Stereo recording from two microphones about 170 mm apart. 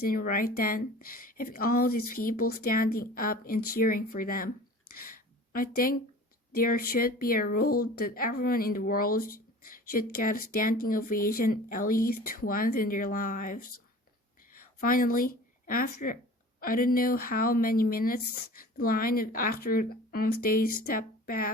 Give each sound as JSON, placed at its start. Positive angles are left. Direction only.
{"t": 0.0, "sound": "speech", "side_deg": 60}
{"t": 4.9, "sound": "a sound", "side_deg": 60}
{"t": 6.5, "sound": "speech", "side_deg": 60}